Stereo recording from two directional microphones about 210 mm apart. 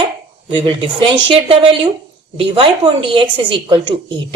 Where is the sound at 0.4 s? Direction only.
25° right (ahead or behind).